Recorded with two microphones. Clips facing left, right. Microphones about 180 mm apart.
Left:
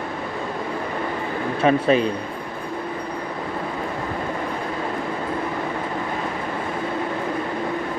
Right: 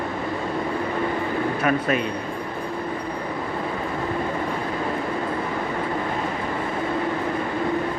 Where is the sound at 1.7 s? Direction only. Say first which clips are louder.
Left 7 dB; 30° left (ahead or behind).